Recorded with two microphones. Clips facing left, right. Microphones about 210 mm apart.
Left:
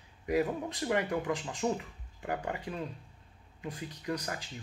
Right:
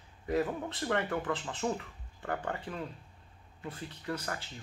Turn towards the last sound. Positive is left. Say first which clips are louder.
# left 1 dB
turn(degrees=15)  # may be behind; listen again after turning